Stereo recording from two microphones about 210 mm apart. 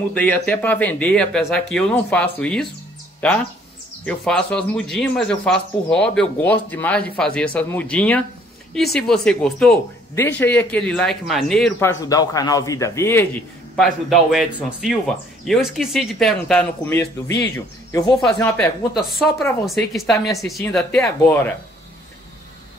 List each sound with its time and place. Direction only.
0.1 s a man's voice: 10° left (ahead or behind)
11.9 s speech: 15° left (ahead or behind)
13.7 s a man's voice: centre (ahead or behind)